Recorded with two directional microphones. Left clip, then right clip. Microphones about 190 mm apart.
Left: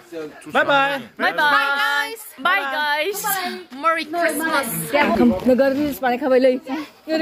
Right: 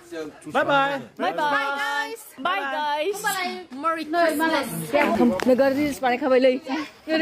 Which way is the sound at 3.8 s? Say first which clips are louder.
Left 3 dB; 30° right (ahead or behind).